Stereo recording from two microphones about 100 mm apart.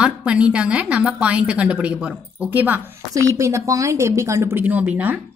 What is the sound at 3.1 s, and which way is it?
A woman's voice, 30° right (ahead or behind).